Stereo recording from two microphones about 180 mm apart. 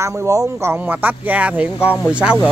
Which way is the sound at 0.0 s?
15° right (ahead or behind).